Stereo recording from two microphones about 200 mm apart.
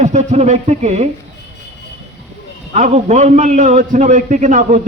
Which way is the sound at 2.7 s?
35° right (ahead or behind).